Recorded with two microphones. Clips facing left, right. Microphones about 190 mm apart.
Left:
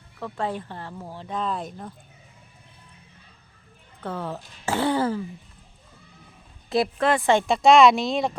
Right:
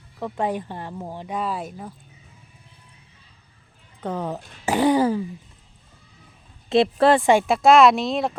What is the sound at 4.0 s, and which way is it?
Speech, 20° right (ahead or behind).